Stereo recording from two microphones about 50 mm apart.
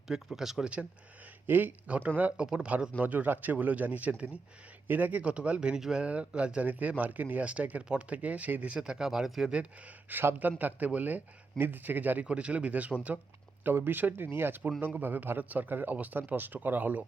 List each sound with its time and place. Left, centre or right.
0.1 s speech: centre
1.5 s a man's voice: right
5.2 s speech: right
6.7 s a man's voice: right
8.7 s speech: centre
9.5 s speech: right
10.1 s a man's voice: right
12.2 s speech: right
13.7 s a man's voice: right